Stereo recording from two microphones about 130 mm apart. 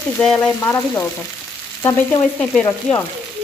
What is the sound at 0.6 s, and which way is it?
Frying, 20° left (ahead or behind).